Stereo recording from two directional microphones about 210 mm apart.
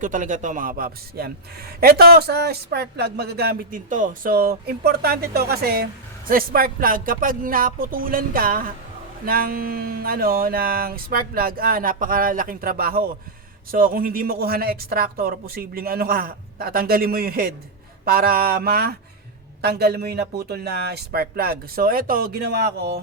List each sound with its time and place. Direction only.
0.0 s a man's voice: 40° right (ahead or behind)